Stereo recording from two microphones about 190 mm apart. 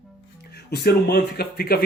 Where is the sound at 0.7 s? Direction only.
55° left (ahead or behind).